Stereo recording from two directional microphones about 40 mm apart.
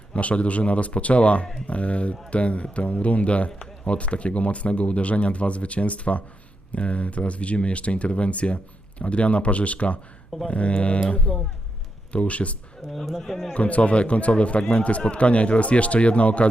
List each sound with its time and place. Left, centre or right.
0.1 s speech: left
12.9 s speech: centre
13.5 s speech: left